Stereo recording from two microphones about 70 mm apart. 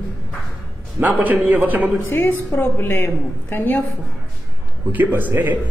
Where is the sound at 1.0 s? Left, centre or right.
Right.